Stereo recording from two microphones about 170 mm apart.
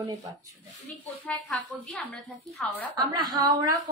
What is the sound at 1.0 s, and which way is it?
A woman's voice, 5° left (ahead or behind).